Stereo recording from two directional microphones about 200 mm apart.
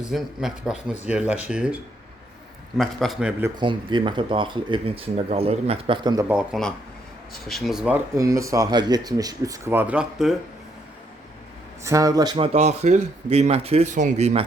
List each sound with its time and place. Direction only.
0.0 s a man's voice: 5° right (ahead or behind)
3.6 s speech: 25° right (ahead or behind)
6.2 s a man's voice: 5° right (ahead or behind)
8.1 s speech: 15° right (ahead or behind)
11.8 s speech: 15° right (ahead or behind)
12.5 s speech: 35° right (ahead or behind)